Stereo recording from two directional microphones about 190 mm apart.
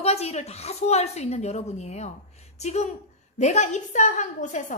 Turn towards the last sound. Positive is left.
turn(degrees=40)  # may be behind; listen again after turning